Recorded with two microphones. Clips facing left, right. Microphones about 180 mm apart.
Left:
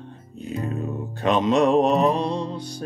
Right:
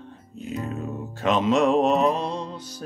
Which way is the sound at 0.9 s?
Centre (ahead or behind).